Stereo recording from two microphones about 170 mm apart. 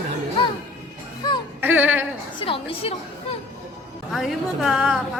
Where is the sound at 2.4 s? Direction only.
30° left (ahead or behind).